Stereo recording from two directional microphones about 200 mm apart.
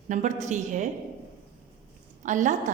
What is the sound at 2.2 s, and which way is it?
Speech, 40° right (ahead or behind).